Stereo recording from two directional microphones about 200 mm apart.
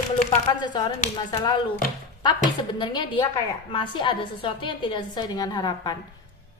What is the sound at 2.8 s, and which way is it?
A woman's voice, 20° left (ahead or behind).